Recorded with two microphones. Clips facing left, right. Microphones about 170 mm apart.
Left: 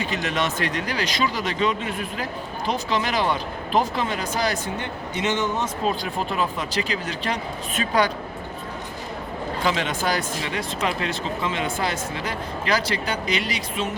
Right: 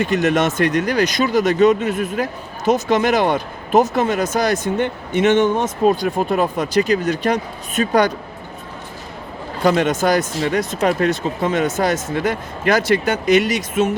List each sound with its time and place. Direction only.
0.0 s speech: 50° right (ahead or behind)
9.6 s speech: 45° right (ahead or behind)